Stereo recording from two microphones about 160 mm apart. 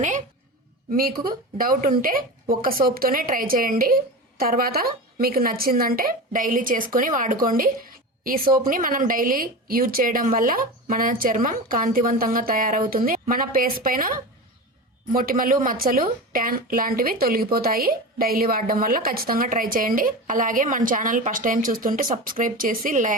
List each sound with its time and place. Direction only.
0.9 s a woman's voice: 65° right (ahead or behind)